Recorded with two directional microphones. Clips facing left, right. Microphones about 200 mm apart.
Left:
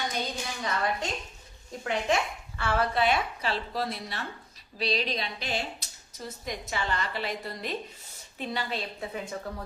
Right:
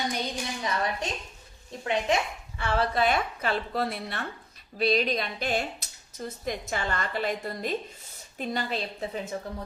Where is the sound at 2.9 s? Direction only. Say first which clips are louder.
Right 1 dB; 45° right (ahead or behind).